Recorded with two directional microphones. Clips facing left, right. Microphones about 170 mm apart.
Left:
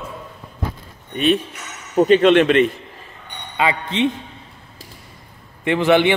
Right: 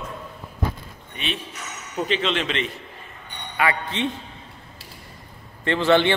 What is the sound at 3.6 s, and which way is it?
Speech, 20° left (ahead or behind).